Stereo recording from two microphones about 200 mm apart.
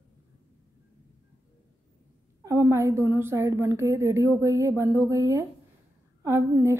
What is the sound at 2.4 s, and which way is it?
A woman's voice, 15° right (ahead or behind).